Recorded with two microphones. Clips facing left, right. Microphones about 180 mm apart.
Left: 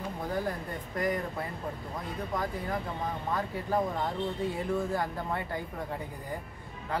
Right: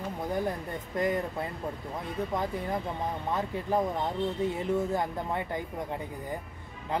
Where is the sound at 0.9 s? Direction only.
20° right (ahead or behind).